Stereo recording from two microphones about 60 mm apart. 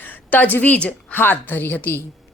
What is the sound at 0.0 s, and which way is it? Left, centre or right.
A woman's voice, left.